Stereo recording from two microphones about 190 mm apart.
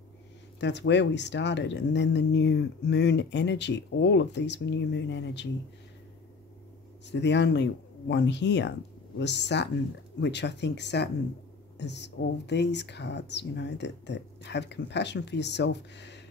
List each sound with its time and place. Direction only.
0.6 s speech: 65° left (ahead or behind)
7.1 s speech: 65° left (ahead or behind)